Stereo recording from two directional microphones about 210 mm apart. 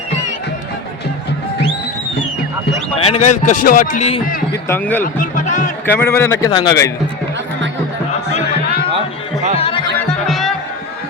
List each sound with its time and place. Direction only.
3.0 s a man's voice: 30° left (ahead or behind)
4.7 s a man's voice: 10° left (ahead or behind)
5.0 s a sound: 40° left (ahead or behind)
5.8 s a man's voice: 10° left (ahead or behind)
9.6 s music: 25° left (ahead or behind)
10.2 s music: centre (ahead or behind)